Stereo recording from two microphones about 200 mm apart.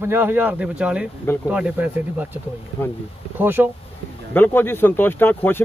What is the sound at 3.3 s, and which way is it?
Speech, 10° right (ahead or behind).